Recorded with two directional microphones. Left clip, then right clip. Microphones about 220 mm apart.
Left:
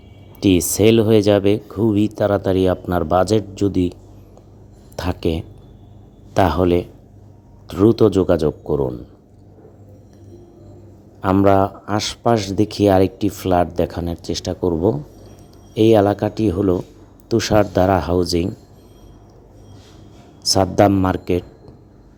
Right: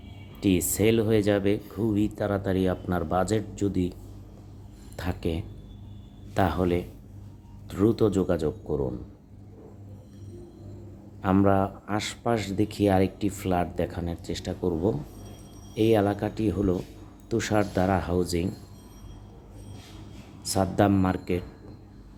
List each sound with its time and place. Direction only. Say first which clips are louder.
0.3 s a man's voice: left 9 dB; 30° left (ahead or behind)
4.9 s a man's voice: left 10 dB; 30° left (ahead or behind)
11.2 s a man's voice: left 9 dB; 25° left (ahead or behind)
20.5 s a man's voice: left 10 dB; 30° left (ahead or behind)